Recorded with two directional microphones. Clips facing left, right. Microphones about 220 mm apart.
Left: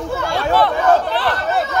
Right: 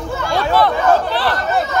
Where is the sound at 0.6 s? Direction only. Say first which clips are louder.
Even; 35° right (ahead or behind).